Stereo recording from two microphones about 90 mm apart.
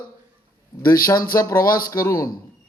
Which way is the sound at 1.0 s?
40° left (ahead or behind).